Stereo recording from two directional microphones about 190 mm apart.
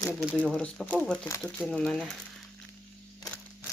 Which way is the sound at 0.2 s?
Centre (ahead or behind).